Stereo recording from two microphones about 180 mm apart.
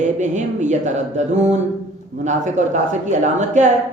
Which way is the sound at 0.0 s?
40° right (ahead or behind).